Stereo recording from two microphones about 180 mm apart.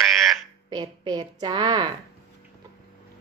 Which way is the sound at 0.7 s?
25° right (ahead or behind).